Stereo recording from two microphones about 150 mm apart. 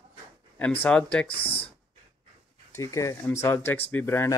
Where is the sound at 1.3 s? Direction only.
40° left (ahead or behind).